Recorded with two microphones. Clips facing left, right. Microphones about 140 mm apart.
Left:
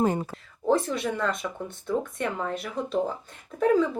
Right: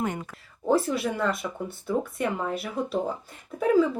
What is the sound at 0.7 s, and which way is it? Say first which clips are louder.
Speech: even; 5° right (ahead or behind).